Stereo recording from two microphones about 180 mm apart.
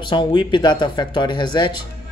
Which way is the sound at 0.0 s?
25° left (ahead or behind).